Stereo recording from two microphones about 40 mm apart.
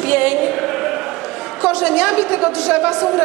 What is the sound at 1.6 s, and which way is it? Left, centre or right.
A man's voice, right.